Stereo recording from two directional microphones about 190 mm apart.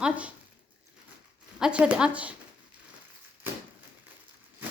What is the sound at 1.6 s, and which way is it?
Speech, 5° right (ahead or behind).